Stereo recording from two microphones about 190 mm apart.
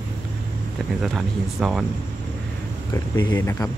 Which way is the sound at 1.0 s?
Centre (ahead or behind).